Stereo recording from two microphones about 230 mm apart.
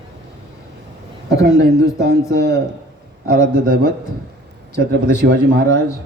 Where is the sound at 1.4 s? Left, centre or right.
Right.